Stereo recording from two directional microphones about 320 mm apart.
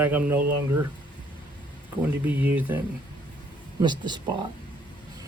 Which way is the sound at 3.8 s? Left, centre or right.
Centre.